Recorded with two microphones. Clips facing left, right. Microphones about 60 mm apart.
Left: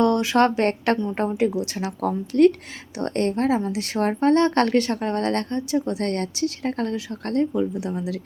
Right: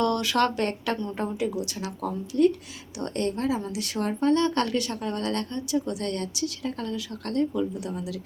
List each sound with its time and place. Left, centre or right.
0.0 s speech: left
0.9 s speech: left
1.4 s speech: left
3.0 s speech: left
6.9 s speech: left